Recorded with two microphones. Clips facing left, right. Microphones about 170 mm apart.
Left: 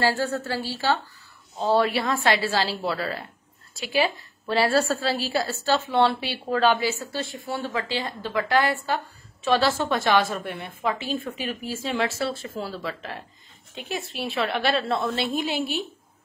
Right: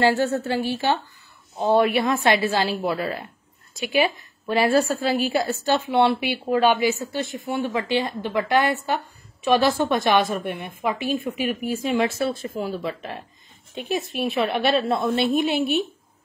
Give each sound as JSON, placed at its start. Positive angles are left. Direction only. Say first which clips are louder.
{"t": 0.0, "sound": "a woman's voice", "louder": "right 4 dB", "side_deg": -20}